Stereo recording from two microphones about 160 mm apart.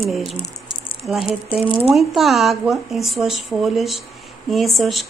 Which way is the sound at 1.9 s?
Centre (ahead or behind).